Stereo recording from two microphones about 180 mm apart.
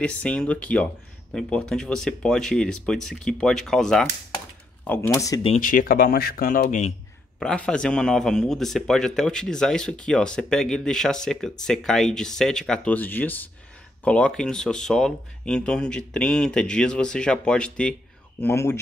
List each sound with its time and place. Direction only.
0.0 s a man's voice: 5° left (ahead or behind)
5.6 s speech: 50° left (ahead or behind)
7.3 s a man's voice: 5° left (ahead or behind)